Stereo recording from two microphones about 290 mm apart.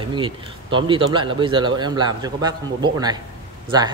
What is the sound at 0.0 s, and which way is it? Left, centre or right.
Speech, centre.